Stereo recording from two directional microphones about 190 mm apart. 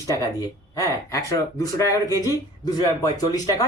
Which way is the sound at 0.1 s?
20° left (ahead or behind).